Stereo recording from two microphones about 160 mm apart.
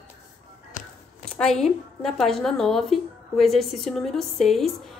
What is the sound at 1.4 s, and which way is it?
A woman's voice, 5° left (ahead or behind).